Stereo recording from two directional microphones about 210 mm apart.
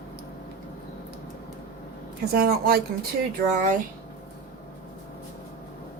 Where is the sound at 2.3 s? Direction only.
45° right (ahead or behind).